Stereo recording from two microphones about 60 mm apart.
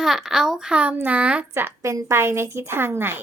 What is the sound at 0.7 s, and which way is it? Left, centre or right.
Speech, right.